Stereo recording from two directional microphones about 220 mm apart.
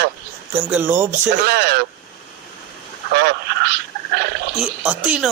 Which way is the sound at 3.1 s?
50° right (ahead or behind).